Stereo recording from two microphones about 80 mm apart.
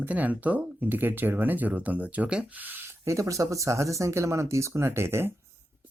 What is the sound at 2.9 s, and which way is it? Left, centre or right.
Speech, right.